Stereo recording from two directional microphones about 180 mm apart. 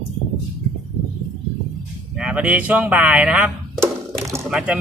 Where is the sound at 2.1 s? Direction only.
5° right (ahead or behind).